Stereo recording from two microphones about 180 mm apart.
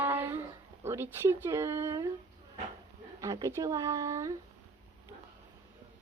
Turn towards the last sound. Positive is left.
turn(degrees=-15)  # may be behind; listen again after turning